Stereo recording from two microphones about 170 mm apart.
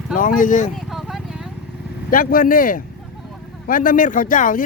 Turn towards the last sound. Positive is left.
turn(degrees=50)  # may be behind; listen again after turning